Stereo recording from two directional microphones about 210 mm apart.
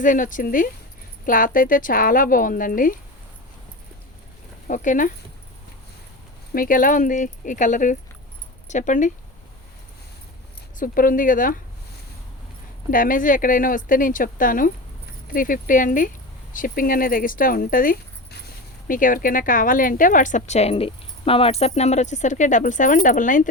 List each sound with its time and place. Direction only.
0.0 s a woman's voice: 40° left (ahead or behind)
4.7 s a woman's voice: 40° left (ahead or behind)
6.5 s a woman's voice: 40° left (ahead or behind)
10.8 s a woman's voice: 40° left (ahead or behind)
12.9 s a woman's voice: 40° left (ahead or behind)